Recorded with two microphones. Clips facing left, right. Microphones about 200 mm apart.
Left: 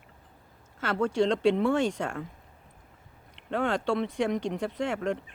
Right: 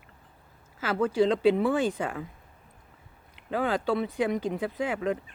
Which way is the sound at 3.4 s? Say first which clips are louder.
Even; 5° right (ahead or behind).